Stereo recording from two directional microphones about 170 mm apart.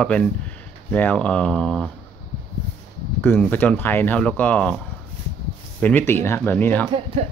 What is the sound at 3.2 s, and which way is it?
Speech, 10° left (ahead or behind).